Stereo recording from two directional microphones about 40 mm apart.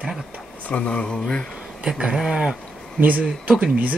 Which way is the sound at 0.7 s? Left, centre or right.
Left.